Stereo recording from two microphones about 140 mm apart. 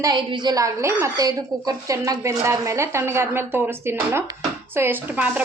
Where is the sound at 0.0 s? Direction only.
30° right (ahead or behind).